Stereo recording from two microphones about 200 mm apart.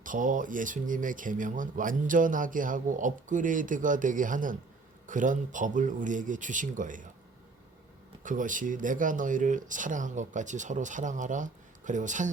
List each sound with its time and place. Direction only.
0.0 s speech: 40° right (ahead or behind)
8.2 s speech: 40° right (ahead or behind)